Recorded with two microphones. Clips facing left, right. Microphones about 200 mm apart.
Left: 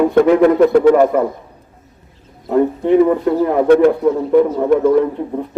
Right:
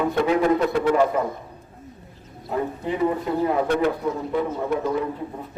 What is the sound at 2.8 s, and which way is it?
A man's voice, 65° left (ahead or behind).